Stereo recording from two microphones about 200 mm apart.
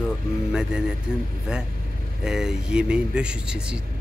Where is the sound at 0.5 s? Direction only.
5° right (ahead or behind).